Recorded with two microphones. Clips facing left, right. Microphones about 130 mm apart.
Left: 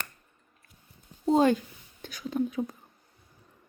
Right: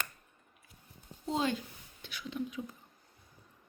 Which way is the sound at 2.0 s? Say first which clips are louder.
Left 9 dB; 45° left (ahead or behind).